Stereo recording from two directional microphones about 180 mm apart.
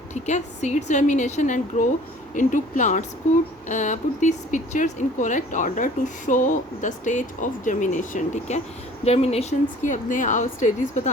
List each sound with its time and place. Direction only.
0.1 s a woman's voice: 40° left (ahead or behind)